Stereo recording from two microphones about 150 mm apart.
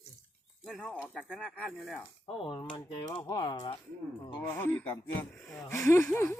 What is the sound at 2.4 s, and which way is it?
Speech, 30° left (ahead or behind).